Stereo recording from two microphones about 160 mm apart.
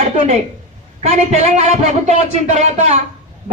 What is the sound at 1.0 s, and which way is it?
A man's voice, 45° right (ahead or behind).